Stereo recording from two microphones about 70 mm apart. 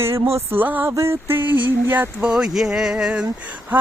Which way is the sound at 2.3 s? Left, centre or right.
Centre.